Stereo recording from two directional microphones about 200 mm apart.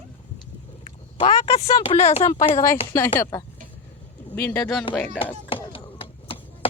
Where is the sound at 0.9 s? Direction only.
30° left (ahead or behind).